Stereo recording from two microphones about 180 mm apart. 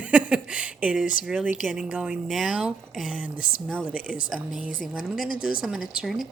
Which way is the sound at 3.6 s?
5° left (ahead or behind).